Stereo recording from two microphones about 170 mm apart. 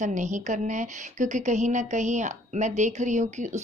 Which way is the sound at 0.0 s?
45° right (ahead or behind).